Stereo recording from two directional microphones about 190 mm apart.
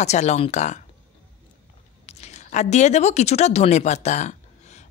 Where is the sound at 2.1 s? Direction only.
35° left (ahead or behind).